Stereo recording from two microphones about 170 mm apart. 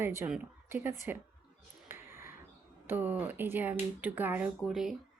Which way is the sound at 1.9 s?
15° right (ahead or behind).